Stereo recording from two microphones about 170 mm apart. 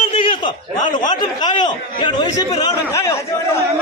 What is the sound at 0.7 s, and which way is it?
Speech, 45° left (ahead or behind).